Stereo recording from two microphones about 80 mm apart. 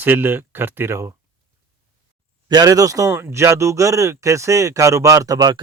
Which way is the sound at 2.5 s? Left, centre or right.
Right.